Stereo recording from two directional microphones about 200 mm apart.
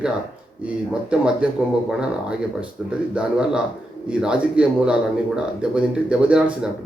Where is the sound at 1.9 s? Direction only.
5° right (ahead or behind).